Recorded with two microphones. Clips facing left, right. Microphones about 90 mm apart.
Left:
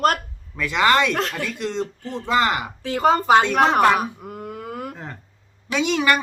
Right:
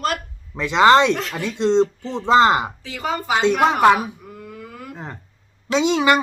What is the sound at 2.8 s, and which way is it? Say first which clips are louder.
Speech: left 7 dB; 45° left (ahead or behind).